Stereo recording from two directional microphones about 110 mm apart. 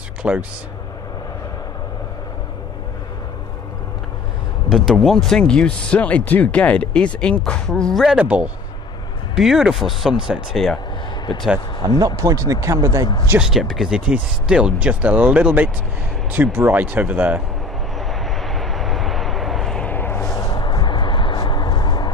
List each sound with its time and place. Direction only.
0.2 s speech: 10° right (ahead or behind)
4.7 s speech: centre (ahead or behind)
8.2 s speech: 10° right (ahead or behind)
11.9 s speech: 30° right (ahead or behind)
13.4 s speech: 5° right (ahead or behind)
17.9 s vehicle: centre (ahead or behind); by 20.2 s 20° left (ahead or behind)
20.3 s a sound: 35° left (ahead or behind)